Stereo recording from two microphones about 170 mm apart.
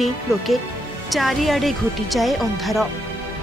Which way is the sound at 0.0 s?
Centre (ahead or behind).